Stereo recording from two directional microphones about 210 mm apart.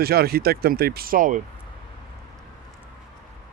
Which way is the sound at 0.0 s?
45° right (ahead or behind).